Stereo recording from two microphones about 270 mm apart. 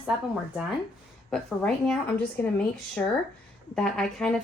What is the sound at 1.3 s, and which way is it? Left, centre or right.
A woman's voice, centre.